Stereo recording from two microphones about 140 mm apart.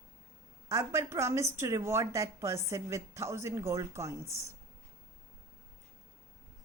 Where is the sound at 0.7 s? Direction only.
20° right (ahead or behind).